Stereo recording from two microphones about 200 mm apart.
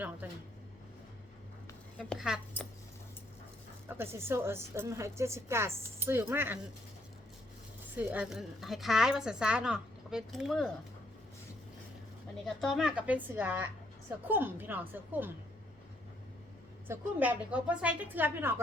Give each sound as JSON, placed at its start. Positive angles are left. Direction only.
{"t": 2.0, "sound": "a woman's voice", "side_deg": 0}
{"t": 3.8, "sound": "a woman's voice", "side_deg": -10}
{"t": 7.9, "sound": "a woman's voice", "side_deg": -5}
{"t": 12.5, "sound": "a woman's voice", "side_deg": 0}
{"t": 16.9, "sound": "a woman's voice", "side_deg": -10}